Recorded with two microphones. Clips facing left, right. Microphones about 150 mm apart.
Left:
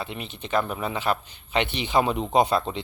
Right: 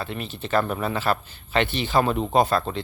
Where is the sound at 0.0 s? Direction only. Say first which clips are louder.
Right 3 dB; 20° left (ahead or behind).